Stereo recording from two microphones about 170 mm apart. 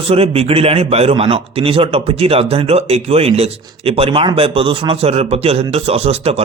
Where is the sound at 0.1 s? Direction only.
35° right (ahead or behind).